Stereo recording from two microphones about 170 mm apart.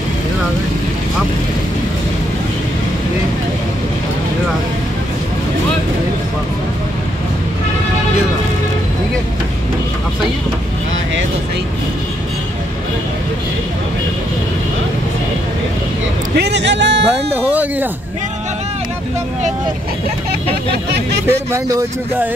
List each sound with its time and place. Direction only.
16.3 s a man's voice: 85° right
17.5 s a man's voice: 10° right (ahead or behind)
21.3 s a man's voice: 15° right (ahead or behind)